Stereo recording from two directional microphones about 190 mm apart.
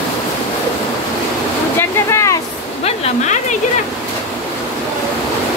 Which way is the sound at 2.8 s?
35° left (ahead or behind).